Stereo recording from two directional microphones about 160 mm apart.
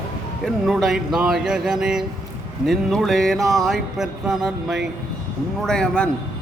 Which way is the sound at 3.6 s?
Centre (ahead or behind).